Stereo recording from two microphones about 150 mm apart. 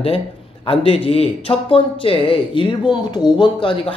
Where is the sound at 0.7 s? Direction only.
40° left (ahead or behind).